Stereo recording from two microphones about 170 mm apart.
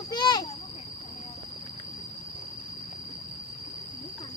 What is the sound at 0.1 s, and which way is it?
Children playing, 25° left (ahead or behind).